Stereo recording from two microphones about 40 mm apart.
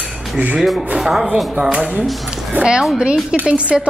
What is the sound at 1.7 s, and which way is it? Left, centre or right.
Speech, right.